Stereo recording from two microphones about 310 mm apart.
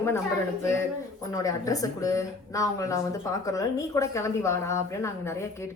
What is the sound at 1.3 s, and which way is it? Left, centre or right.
A woman's voice, centre.